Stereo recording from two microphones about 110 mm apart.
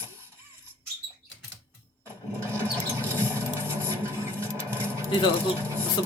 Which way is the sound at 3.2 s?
20° right (ahead or behind).